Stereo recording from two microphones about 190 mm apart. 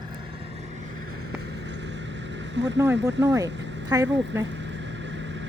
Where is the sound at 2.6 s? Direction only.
70° right (ahead or behind).